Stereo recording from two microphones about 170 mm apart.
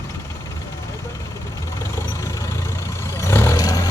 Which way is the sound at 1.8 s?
15° left (ahead or behind).